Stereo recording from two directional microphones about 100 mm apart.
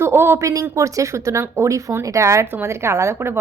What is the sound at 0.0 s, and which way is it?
Speech, 25° right (ahead or behind).